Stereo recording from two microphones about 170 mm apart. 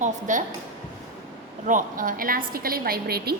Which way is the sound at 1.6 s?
50° right (ahead or behind).